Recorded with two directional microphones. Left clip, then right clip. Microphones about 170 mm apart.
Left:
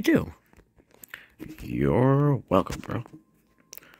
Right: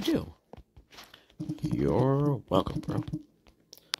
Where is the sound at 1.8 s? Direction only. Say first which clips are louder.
Left 4 dB; 10° left (ahead or behind).